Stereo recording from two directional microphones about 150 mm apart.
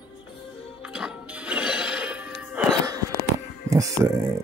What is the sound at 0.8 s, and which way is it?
Music, 5° right (ahead or behind).